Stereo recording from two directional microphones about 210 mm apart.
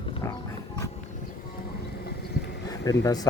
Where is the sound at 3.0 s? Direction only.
15° left (ahead or behind).